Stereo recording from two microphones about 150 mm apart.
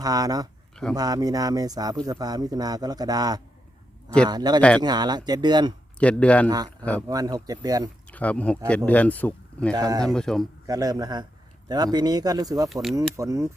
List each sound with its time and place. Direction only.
0.0 s a man's voice: 25° right (ahead or behind)
6.0 s speech: 10° left (ahead or behind)
7.1 s a man's voice: 25° right (ahead or behind)
8.0 s speech: 10° left (ahead or behind)
9.7 s a man's voice: 25° right (ahead or behind)
10.0 s a man's voice: 5° left (ahead or behind)
10.7 s a man's voice: 25° right (ahead or behind)
12.6 s a man's voice: centre (ahead or behind)
13.0 s a man's voice: 20° right (ahead or behind)